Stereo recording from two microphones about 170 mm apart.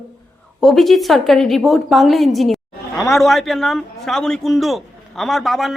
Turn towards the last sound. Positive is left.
turn(degrees=0)  # may be behind; listen again after turning